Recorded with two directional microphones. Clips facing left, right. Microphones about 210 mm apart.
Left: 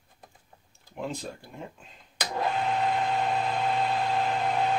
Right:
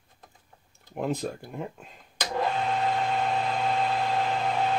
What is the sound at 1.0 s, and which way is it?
Speech, 55° right (ahead or behind).